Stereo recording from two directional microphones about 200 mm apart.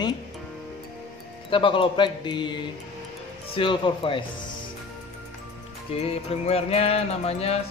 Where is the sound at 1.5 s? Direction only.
25° left (ahead or behind).